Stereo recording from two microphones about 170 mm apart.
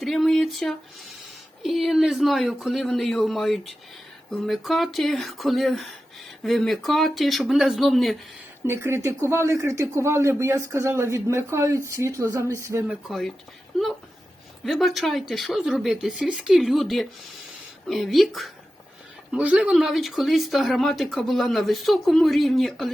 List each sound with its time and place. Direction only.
0.0 s speech: centre (ahead or behind)
8.6 s speech: 15° right (ahead or behind)
13.1 s speech: centre (ahead or behind)
14.6 s speech: centre (ahead or behind)